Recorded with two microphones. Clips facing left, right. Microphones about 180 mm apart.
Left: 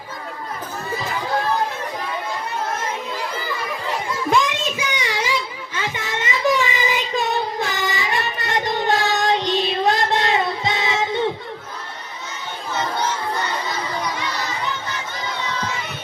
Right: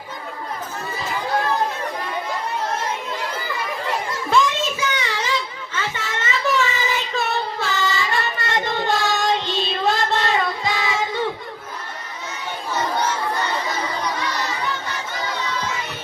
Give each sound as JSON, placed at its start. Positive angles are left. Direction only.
{"t": 4.3, "sound": "child singing", "side_deg": 15}